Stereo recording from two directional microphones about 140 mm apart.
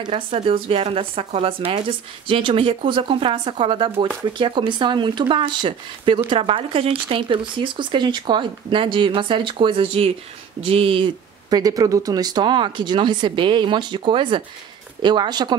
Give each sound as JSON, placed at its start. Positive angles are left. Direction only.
{"t": 0.0, "sound": "speech", "side_deg": -40}
{"t": 11.5, "sound": "speech", "side_deg": -25}